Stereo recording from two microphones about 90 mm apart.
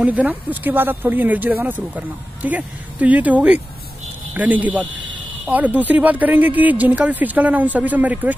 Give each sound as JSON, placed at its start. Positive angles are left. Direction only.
{"t": 0.0, "sound": "speech", "side_deg": -15}